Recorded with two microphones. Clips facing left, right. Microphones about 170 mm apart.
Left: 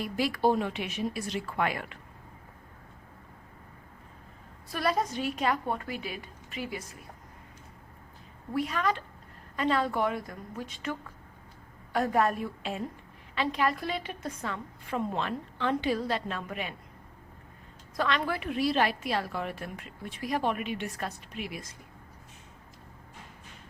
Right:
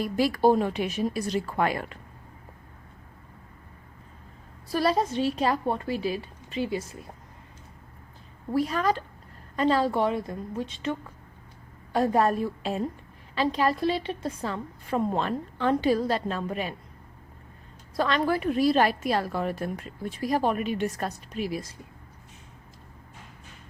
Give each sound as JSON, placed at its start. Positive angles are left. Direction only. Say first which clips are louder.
{"t": 0.0, "sound": "a woman's voice", "louder": "right 5 dB", "side_deg": -40}
{"t": 4.7, "sound": "a woman's voice", "louder": "right 5 dB", "side_deg": -30}
{"t": 8.5, "sound": "a woman's voice", "louder": "right 4 dB", "side_deg": -35}
{"t": 11.9, "sound": "a woman's voice", "louder": "right 4 dB", "side_deg": -30}
{"t": 17.9, "sound": "a woman's voice", "louder": "right 5 dB", "side_deg": -35}